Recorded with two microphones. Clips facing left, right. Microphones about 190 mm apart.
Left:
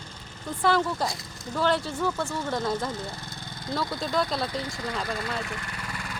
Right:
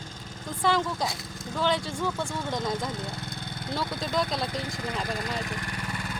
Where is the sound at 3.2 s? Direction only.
55° right (ahead or behind).